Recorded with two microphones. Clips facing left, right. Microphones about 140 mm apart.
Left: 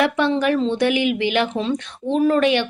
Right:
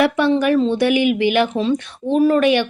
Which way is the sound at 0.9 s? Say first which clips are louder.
Right 4 dB; 45° right (ahead or behind).